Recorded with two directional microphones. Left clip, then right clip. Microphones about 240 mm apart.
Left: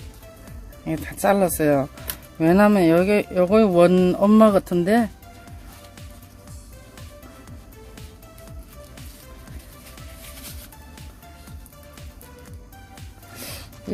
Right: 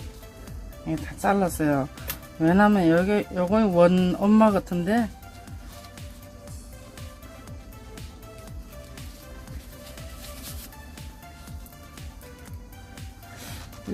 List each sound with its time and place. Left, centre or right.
1.0 s speech: left
13.9 s music: centre